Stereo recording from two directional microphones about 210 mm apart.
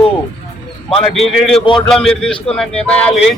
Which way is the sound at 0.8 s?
Centre (ahead or behind).